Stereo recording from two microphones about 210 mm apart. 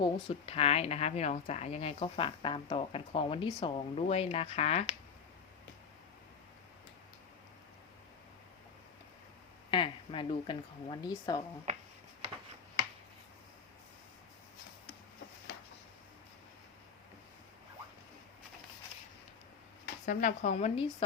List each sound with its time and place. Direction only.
0.0 s a woman's voice: 30° left (ahead or behind)
9.7 s a woman's voice: 25° left (ahead or behind)
19.8 s speech: 40° left (ahead or behind)